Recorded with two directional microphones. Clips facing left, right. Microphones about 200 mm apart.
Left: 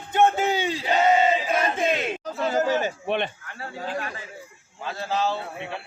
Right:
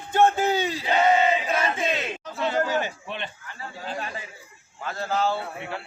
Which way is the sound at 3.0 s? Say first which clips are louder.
Left 9 dB; 60° left (ahead or behind).